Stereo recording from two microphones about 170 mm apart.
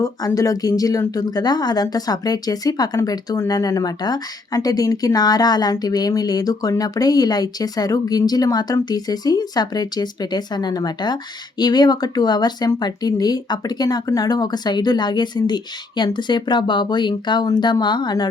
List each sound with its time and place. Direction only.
0.0 s speech: 20° left (ahead or behind)